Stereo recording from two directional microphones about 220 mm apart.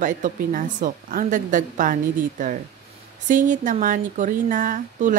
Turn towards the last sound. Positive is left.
turn(degrees=-35)  # may be behind; listen again after turning